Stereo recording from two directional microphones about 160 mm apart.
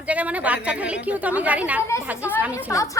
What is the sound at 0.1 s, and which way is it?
A woman's voice, 10° right (ahead or behind).